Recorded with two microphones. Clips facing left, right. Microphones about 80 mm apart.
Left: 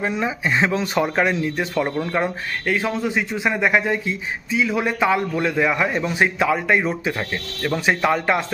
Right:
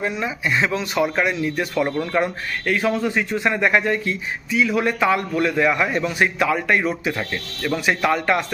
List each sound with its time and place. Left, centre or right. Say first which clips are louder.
0.1 s speech: left 1 dB; left
1.5 s a man's voice: right 1 dB; centre